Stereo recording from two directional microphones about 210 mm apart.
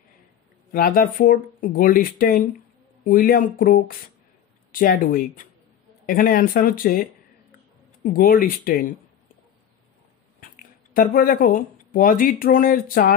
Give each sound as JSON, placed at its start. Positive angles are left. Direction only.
{"t": 0.7, "sound": "speech", "side_deg": 45}
{"t": 10.4, "sound": "speech", "side_deg": 40}